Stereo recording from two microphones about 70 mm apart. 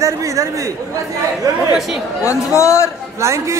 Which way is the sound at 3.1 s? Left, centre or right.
Right.